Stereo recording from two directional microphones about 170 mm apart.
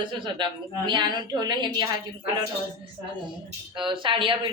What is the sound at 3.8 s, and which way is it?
Speech, 30° right (ahead or behind).